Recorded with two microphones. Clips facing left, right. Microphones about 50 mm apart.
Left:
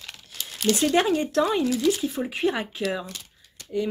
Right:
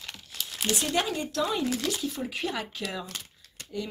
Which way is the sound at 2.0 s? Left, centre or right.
Left.